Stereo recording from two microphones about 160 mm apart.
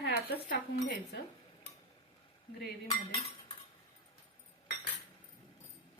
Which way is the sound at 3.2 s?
35° left (ahead or behind).